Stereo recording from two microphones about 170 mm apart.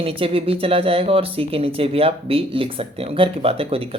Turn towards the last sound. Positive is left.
turn(degrees=-35)  # may be behind; listen again after turning